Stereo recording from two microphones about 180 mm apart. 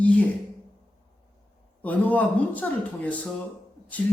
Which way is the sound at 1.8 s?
10° left (ahead or behind).